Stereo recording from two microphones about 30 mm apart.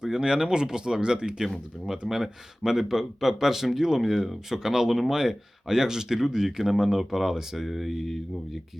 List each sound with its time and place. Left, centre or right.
0.0 s speech: right
1.9 s speech: centre